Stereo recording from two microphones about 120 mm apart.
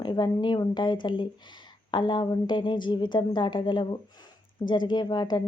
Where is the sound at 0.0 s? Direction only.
40° left (ahead or behind).